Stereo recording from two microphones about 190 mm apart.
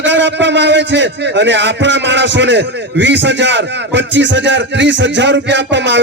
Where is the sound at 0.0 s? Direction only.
70° right (ahead or behind).